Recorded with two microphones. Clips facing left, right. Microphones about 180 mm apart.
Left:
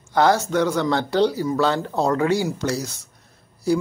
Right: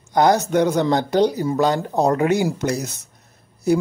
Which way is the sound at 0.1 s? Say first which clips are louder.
Right 2 dB; 15° right (ahead or behind).